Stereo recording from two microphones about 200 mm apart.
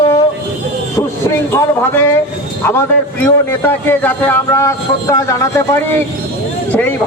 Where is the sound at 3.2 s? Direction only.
10° left (ahead or behind).